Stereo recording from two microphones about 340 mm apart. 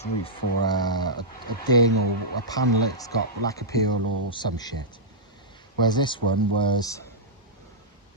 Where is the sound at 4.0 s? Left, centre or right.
Right.